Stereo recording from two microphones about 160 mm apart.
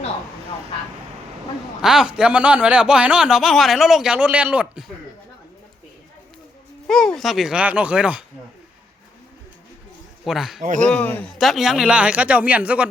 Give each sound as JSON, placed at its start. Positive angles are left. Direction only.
{"t": 1.8, "sound": "speech", "side_deg": -5}
{"t": 6.8, "sound": "speech", "side_deg": 5}
{"t": 10.2, "sound": "speech", "side_deg": 0}
{"t": 10.6, "sound": "speech", "side_deg": -55}
{"t": 10.8, "sound": "a man's voice", "side_deg": 10}